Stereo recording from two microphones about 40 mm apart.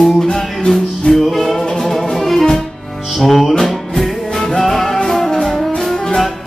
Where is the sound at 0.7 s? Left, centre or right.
Centre.